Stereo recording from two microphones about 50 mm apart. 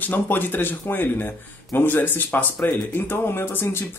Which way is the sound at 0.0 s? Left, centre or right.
Left.